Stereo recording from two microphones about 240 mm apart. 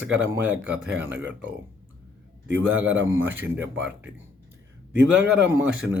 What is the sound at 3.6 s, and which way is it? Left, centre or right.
Speech, right.